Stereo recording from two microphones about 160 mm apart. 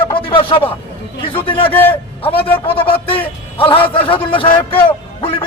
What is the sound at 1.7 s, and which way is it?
A man's voice, 10° left (ahead or behind).